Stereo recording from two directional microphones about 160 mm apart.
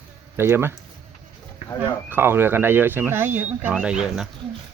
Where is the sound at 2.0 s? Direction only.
15° right (ahead or behind).